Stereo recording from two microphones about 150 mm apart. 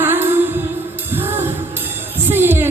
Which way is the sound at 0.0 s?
15° right (ahead or behind).